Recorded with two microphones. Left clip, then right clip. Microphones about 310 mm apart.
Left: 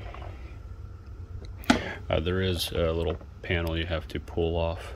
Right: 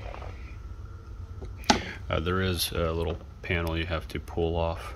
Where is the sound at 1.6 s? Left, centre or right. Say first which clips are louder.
Even; centre.